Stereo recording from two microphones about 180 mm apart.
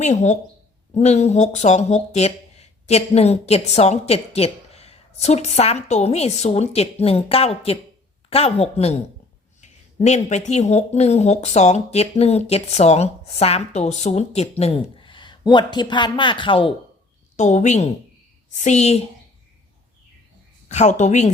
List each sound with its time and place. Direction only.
0.0 s speech: 40° left (ahead or behind)
17.3 s speech: 40° left (ahead or behind)
20.7 s speech: 40° left (ahead or behind)